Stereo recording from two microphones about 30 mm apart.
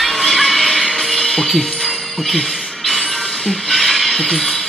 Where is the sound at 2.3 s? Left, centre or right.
Centre.